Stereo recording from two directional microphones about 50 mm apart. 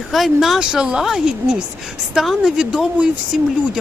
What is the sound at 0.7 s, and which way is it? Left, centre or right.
A woman's voice, centre.